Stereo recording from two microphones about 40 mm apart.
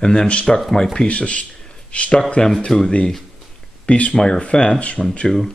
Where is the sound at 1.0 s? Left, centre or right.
Left.